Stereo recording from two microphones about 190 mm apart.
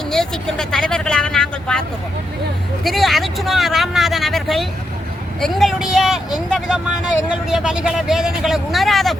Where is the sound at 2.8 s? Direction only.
Centre (ahead or behind).